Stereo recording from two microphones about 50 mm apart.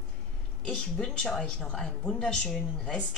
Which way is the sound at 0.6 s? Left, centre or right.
Centre.